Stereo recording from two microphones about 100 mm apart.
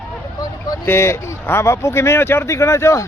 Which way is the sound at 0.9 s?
25° left (ahead or behind).